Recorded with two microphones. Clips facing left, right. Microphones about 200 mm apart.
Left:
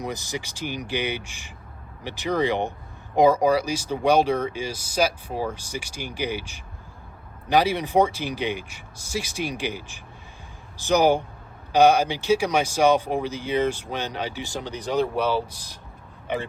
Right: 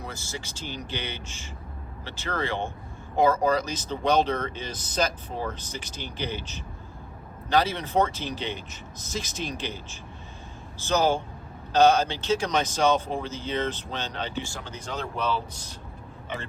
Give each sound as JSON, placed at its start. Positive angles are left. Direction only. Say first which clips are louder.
{"t": 0.0, "sound": "speech", "louder": "left 6 dB", "side_deg": 15}